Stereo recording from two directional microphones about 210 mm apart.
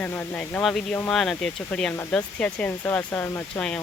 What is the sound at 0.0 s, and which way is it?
Speech, 5° left (ahead or behind).